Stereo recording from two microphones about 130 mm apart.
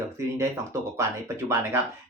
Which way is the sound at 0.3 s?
20° right (ahead or behind).